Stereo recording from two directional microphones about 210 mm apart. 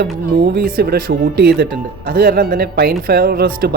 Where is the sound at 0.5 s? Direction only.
50° right (ahead or behind).